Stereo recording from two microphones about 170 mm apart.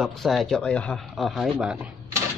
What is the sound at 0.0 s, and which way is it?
A man's voice, centre (ahead or behind).